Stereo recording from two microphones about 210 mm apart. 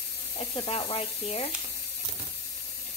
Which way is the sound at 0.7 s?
30° left (ahead or behind).